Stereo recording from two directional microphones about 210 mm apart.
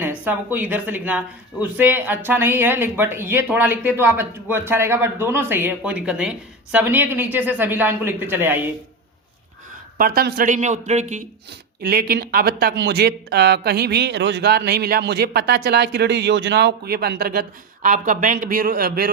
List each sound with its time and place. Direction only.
0.0 s speech: 10° right (ahead or behind)
10.0 s a man's voice: 45° right (ahead or behind)
11.8 s a man's voice: 45° right (ahead or behind)